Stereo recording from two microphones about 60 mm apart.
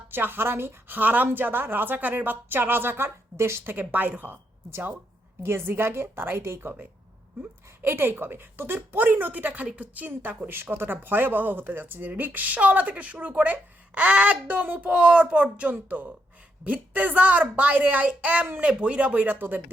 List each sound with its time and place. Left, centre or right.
0.1 s a woman's voice: right
3.6 s a woman's voice: right
5.4 s a woman's voice: right
7.8 s a woman's voice: right